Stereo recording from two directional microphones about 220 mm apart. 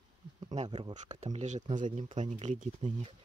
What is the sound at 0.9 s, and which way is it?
Speech, 35° right (ahead or behind).